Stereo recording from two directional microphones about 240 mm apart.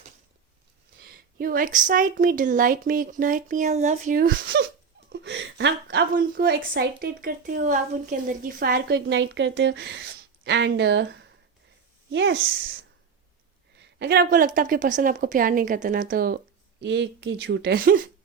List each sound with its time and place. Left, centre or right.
1.0 s a woman's voice: right
13.7 s a woman's voice: right